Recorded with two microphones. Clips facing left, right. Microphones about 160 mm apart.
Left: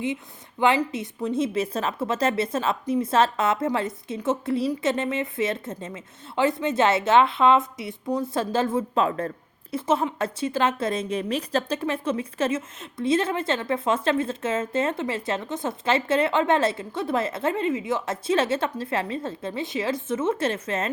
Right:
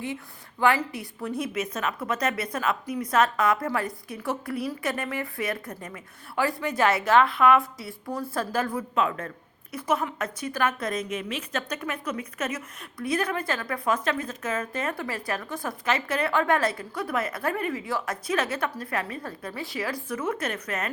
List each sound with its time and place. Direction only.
0.6 s a woman's voice: 20° left (ahead or behind)